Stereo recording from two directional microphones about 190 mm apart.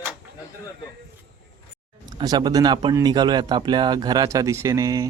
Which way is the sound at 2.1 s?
20° right (ahead or behind).